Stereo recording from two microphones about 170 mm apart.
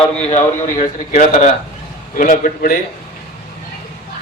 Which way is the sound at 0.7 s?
45° left (ahead or behind).